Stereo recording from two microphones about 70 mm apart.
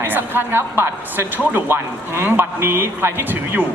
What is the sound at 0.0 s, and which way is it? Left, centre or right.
A woman's voice, right.